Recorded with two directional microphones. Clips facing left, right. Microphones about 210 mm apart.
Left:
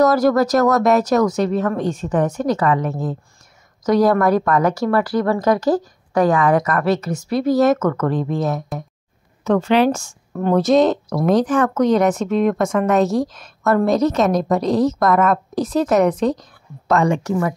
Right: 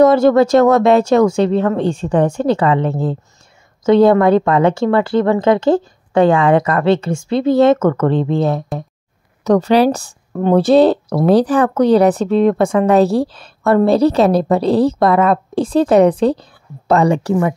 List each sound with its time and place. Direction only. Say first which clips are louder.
0.0 s speech: right 5 dB; 25° right (ahead or behind)